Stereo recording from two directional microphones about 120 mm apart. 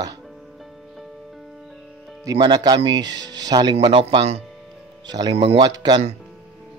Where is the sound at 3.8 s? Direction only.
45° right (ahead or behind).